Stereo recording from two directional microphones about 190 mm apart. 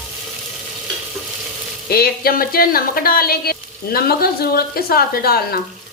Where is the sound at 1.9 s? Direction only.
55° left (ahead or behind).